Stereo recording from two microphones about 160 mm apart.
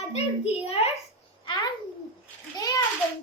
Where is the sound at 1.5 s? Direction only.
25° left (ahead or behind).